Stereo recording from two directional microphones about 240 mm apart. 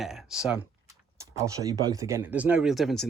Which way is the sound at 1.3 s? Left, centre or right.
Centre.